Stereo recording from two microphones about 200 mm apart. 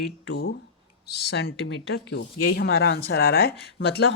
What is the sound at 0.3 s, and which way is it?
Speech, 65° left (ahead or behind).